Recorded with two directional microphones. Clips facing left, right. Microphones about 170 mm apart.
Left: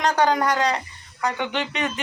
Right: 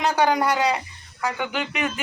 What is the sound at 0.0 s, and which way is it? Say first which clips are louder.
Speech: even; 10° right (ahead or behind).